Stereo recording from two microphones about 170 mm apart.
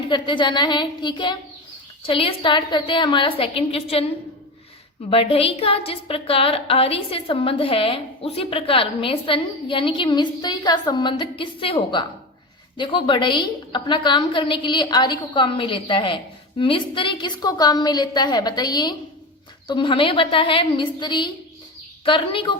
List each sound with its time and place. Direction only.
0.1 s a woman's voice: 30° left (ahead or behind)
5.1 s a woman's voice: 35° left (ahead or behind)